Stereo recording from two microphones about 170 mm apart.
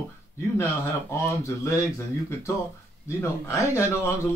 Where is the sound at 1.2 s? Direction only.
20° left (ahead or behind).